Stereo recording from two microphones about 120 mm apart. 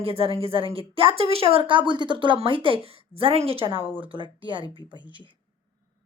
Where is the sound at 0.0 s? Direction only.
50° right (ahead or behind).